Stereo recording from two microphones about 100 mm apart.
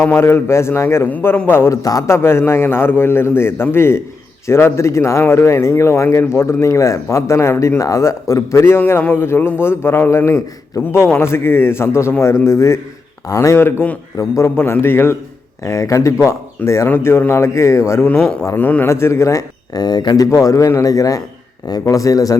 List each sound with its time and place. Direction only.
0.1 s speech: 25° left (ahead or behind)
1.8 s speech: 35° left (ahead or behind); by 14.0 s 20° left (ahead or behind)
14.2 s speech: 30° left (ahead or behind)
18.0 s a man's voice: 20° left (ahead or behind); by 22.4 s 35° left (ahead or behind)